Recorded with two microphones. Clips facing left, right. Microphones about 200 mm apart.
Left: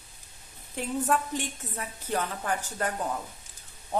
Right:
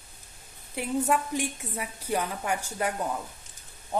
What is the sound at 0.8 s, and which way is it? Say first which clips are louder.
A woman's voice: right 1 dB; 10° right (ahead or behind).